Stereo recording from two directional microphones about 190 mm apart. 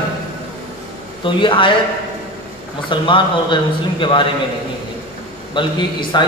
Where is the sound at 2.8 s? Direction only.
25° left (ahead or behind).